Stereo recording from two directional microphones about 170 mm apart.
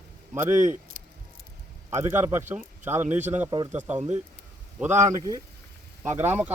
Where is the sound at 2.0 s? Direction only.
15° right (ahead or behind).